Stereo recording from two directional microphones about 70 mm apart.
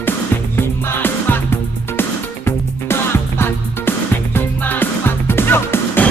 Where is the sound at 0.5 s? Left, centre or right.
Left.